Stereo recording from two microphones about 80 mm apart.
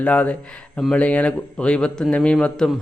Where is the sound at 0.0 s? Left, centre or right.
Centre.